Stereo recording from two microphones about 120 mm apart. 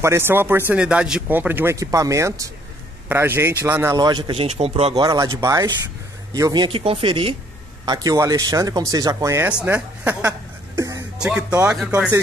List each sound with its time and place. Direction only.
0.0 s speech: 20° right (ahead or behind)
3.9 s a man's voice: 35° right (ahead or behind); by 4.9 s 55° right (ahead or behind)
4.9 s a man's voice: 30° right (ahead or behind); by 7.3 s 50° right (ahead or behind)
7.8 s speech: 35° right (ahead or behind)
9.5 s speech: 10° right (ahead or behind)
10.8 s a sound: 25° right (ahead or behind)
11.1 s speech: 10° right (ahead or behind)